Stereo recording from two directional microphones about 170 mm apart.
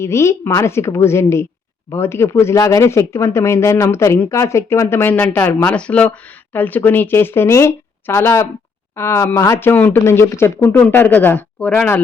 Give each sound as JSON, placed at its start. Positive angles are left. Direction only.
{"t": 0.0, "sound": "speech", "side_deg": 15}